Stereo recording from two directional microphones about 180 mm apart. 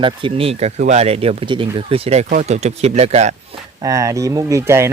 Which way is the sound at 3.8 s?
20° right (ahead or behind).